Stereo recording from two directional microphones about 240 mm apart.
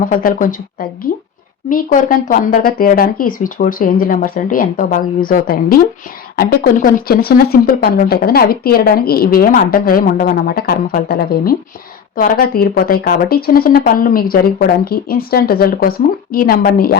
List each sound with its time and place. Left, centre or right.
0.0 s speech: left